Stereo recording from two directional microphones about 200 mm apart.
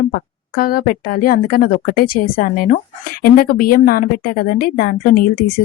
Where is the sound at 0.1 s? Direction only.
45° left (ahead or behind).